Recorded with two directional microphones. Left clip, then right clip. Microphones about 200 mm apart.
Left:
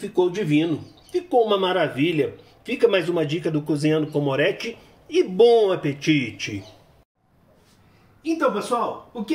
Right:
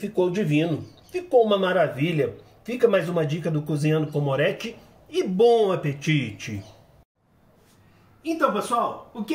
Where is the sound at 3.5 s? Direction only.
20° left (ahead or behind).